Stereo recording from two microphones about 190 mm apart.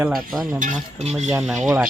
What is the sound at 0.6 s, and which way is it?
Cutlery, 35° right (ahead or behind).